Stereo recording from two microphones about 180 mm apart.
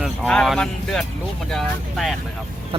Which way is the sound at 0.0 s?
Centre (ahead or behind).